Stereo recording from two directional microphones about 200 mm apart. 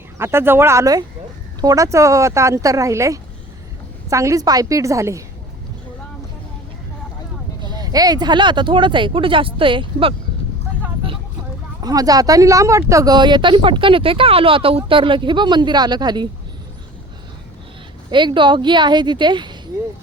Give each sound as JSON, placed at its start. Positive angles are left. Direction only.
{"t": 0.2, "sound": "speech", "side_deg": -10}
{"t": 7.6, "sound": "speech", "side_deg": -20}
{"t": 11.8, "sound": "speech", "side_deg": -20}
{"t": 18.1, "sound": "speech", "side_deg": -25}